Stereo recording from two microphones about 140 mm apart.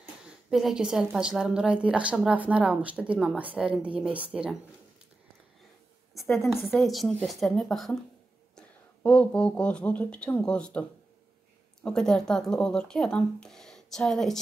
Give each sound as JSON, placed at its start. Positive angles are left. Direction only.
{"t": 0.5, "sound": "a woman's voice", "side_deg": 0}
{"t": 6.3, "sound": "speech", "side_deg": 0}